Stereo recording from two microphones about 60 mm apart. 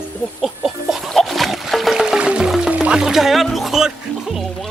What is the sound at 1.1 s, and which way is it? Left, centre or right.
Music, centre.